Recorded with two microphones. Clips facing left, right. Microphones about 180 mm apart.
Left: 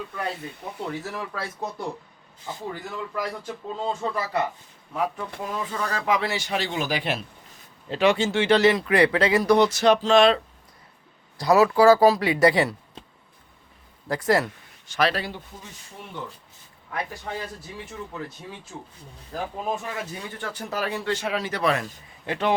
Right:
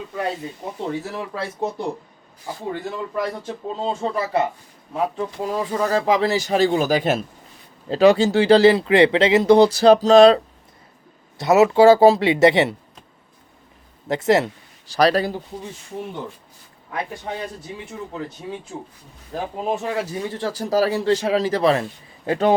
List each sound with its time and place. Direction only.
0.9 s a man's voice: 30° right (ahead or behind)
2.8 s a man's voice: 30° right (ahead or behind)
11.3 s a man's voice: 25° right (ahead or behind)
14.1 s speech: 25° right (ahead or behind)
14.9 s speech: 40° right (ahead or behind)
16.9 s a man's voice: 25° right (ahead or behind)
19.3 s a man's voice: 25° right (ahead or behind)